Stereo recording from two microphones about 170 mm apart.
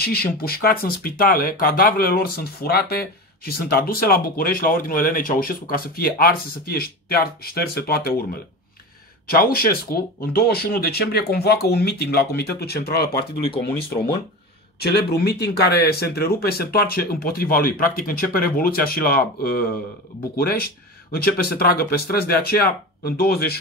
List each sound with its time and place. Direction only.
0.0 s speech: 65° left (ahead or behind)
9.3 s speech: 60° left (ahead or behind)